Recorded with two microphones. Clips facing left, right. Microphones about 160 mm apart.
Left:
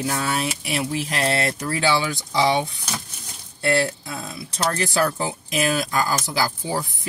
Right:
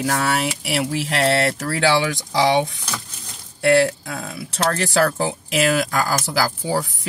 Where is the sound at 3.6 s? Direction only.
80° right.